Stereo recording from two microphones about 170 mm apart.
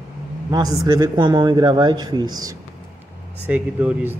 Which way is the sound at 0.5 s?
20° right (ahead or behind).